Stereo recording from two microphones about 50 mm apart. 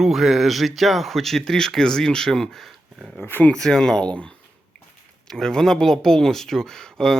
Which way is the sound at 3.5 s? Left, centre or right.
Centre.